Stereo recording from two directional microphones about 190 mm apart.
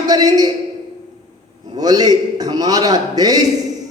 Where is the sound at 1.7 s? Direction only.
20° right (ahead or behind).